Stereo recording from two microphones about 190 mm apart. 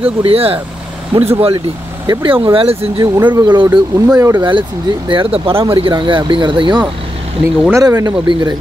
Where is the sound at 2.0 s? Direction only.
25° right (ahead or behind).